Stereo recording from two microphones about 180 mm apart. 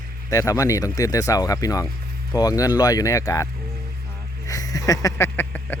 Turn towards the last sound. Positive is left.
turn(degrees=10)  # may be behind; listen again after turning